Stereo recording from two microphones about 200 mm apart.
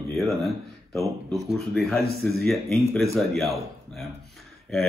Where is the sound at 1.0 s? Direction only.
15° right (ahead or behind).